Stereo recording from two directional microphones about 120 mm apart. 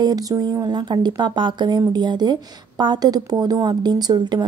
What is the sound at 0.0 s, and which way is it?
A woman's voice, 30° right (ahead or behind).